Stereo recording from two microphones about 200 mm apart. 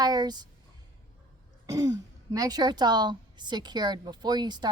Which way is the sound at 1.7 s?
20° right (ahead or behind).